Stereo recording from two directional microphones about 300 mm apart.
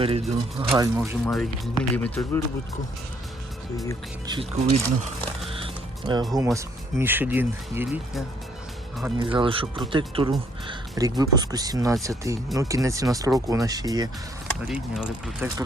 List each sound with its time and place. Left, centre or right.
0.0 s speech: centre
0.7 s speech: centre
4.3 s speech: centre
5.5 s music: centre
6.3 s speech: centre
9.1 s speech: centre